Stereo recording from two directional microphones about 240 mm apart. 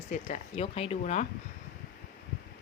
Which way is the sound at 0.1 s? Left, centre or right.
Left.